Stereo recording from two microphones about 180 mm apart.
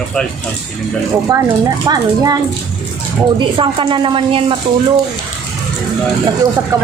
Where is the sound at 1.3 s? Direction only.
20° right (ahead or behind).